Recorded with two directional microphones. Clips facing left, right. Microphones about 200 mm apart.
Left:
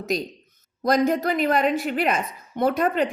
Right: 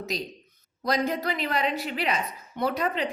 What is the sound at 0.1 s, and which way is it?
A woman's voice, 50° left (ahead or behind).